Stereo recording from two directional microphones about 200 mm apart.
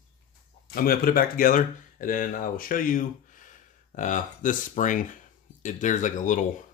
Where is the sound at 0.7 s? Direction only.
45° left (ahead or behind).